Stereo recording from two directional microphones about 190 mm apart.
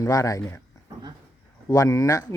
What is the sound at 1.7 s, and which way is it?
Speech, 15° left (ahead or behind).